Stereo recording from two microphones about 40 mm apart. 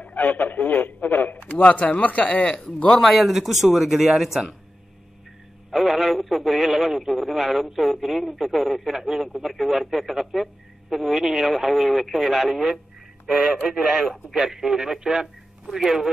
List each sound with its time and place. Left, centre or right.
0.0 s speech: left
1.4 s speech: left
2.4 s speech: left
3.0 s speech: centre
5.7 s speech: centre